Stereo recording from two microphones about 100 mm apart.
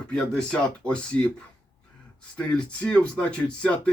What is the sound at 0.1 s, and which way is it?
Speech, 10° left (ahead or behind).